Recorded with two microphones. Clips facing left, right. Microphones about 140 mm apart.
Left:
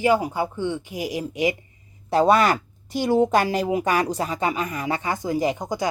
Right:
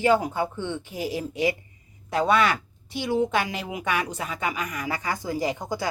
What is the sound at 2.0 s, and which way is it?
Speech, 35° left (ahead or behind).